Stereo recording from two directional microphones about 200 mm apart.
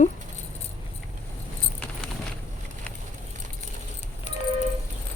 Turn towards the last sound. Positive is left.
turn(degrees=35)  # may be behind; listen again after turning